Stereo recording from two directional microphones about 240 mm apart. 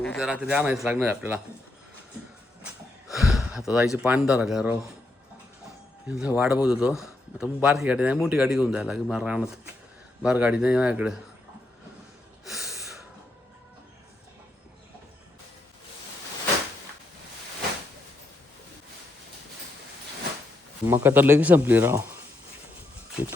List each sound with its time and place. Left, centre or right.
0.0 s speech: centre
3.1 s a sound: centre
3.7 s speech: centre
6.1 s speech: centre
12.5 s a sound: centre
20.8 s speech: centre